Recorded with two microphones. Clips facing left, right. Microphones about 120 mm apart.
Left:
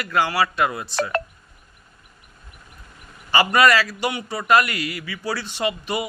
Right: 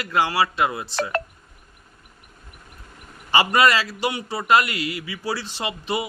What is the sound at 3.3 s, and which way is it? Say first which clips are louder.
A man's voice: left 1 dB; 25° right (ahead or behind).